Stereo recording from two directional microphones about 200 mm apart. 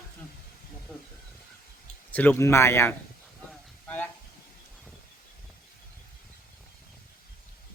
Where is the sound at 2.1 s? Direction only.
10° left (ahead or behind).